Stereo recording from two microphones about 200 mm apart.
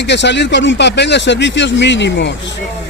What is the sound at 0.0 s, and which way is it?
Speech, 60° left (ahead or behind).